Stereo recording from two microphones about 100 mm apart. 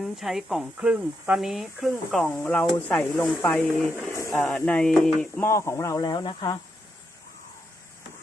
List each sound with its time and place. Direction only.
0.0 s speech: centre (ahead or behind)
2.3 s speech: 5° left (ahead or behind)
5.4 s speech: 25° left (ahead or behind)
6.0 s speech: 45° left (ahead or behind)